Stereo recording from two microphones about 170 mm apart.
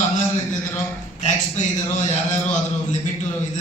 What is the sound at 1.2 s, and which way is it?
A man's voice, 45° left (ahead or behind).